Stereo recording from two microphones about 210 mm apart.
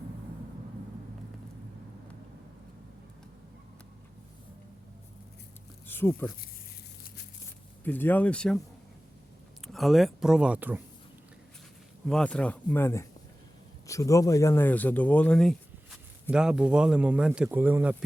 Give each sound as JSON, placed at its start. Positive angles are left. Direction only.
{"t": 5.9, "sound": "speech", "side_deg": 10}
{"t": 7.9, "sound": "speech", "side_deg": 10}
{"t": 9.7, "sound": "speech", "side_deg": 0}
{"t": 12.0, "sound": "speech", "side_deg": 5}